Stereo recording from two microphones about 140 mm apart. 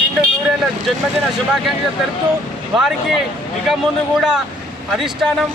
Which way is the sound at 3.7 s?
5° right (ahead or behind).